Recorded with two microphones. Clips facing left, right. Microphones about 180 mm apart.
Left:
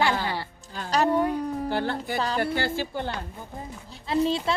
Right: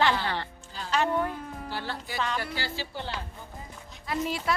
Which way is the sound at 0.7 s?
45° left (ahead or behind).